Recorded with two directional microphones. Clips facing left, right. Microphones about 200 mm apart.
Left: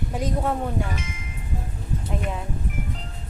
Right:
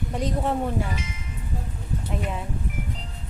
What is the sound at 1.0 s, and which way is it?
Music, 50° left (ahead or behind).